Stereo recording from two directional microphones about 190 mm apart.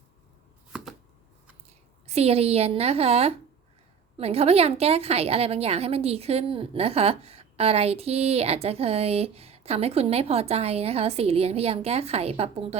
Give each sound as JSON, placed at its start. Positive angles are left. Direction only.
{"t": 2.0, "sound": "a woman's voice", "side_deg": -30}